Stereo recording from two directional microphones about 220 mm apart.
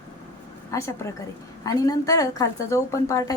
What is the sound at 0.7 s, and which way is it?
A woman's voice, 15° left (ahead or behind).